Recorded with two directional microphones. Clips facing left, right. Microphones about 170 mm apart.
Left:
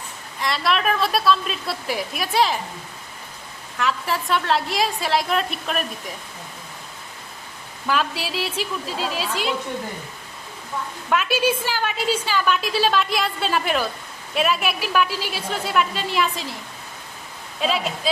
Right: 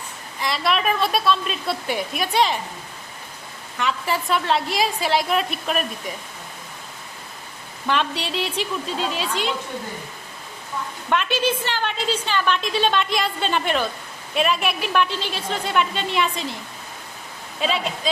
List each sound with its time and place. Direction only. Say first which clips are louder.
0.3 s a woman's voice: even; centre (ahead or behind)
3.8 s a woman's voice: even; centre (ahead or behind)
7.9 s a woman's voice: even; 5° left (ahead or behind)
11.1 s a woman's voice: left 1 dB; 5° left (ahead or behind)
17.6 s a woman's voice: left 1 dB; centre (ahead or behind)